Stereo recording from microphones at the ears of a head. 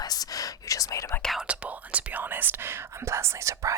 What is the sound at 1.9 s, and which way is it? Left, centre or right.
Speech, right.